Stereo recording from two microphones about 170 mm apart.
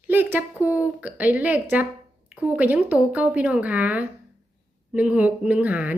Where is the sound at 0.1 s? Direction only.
10° right (ahead or behind).